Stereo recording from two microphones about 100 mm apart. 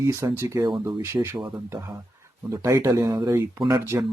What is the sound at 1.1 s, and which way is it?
Speech, 25° right (ahead or behind).